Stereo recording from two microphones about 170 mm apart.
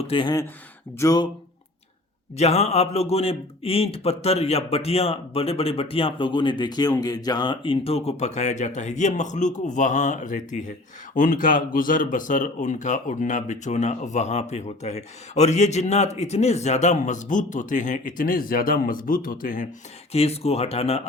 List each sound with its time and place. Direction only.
0.0 s speech: 30° left (ahead or behind)
2.4 s a man's voice: 40° left (ahead or behind)
20.1 s a man's voice: 35° left (ahead or behind)